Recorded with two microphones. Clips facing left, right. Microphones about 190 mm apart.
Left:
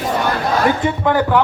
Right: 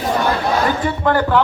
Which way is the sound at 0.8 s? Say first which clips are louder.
Left 1 dB; 15° left (ahead or behind).